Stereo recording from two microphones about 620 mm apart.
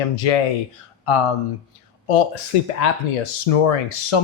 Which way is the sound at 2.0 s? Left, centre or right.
Left.